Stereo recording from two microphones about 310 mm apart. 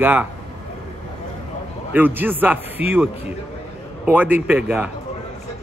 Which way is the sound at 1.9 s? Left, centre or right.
Centre.